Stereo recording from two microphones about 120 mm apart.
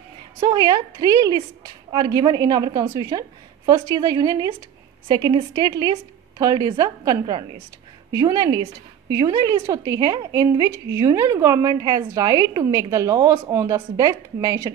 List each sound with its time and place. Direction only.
0.4 s a woman's voice: 35° right (ahead or behind)